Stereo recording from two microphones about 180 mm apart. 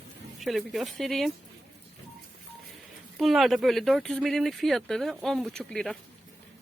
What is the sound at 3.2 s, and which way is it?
A woman's voice, centre (ahead or behind).